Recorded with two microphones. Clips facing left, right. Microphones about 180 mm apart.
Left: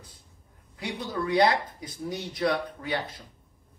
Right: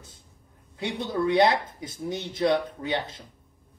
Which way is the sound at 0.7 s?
25° right (ahead or behind).